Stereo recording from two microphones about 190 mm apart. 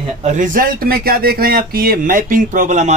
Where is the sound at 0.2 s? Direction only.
40° right (ahead or behind).